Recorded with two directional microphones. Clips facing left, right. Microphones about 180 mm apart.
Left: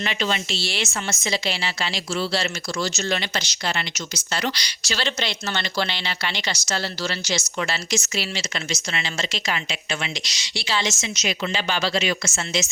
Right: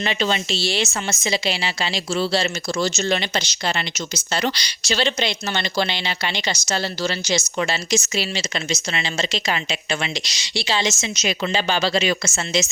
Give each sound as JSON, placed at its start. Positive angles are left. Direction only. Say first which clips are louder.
{"t": 0.0, "sound": "a woman's voice", "louder": "right 3 dB", "side_deg": -30}